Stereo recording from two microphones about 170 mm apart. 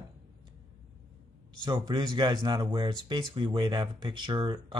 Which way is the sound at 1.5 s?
25° right (ahead or behind).